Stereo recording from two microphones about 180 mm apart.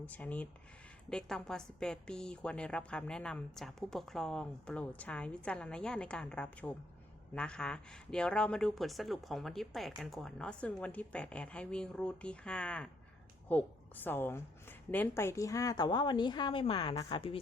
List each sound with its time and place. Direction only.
0.0 s a woman's voice: 10° left (ahead or behind); by 17.4 s 30° left (ahead or behind)